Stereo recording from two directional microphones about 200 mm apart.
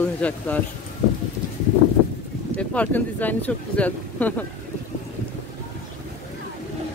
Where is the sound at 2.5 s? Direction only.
5° left (ahead or behind).